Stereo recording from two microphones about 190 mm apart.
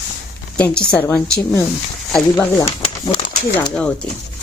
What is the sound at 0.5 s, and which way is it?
A woman's voice, 5° left (ahead or behind).